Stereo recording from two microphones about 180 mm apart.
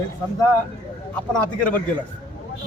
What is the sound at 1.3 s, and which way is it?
Speech, 10° left (ahead or behind).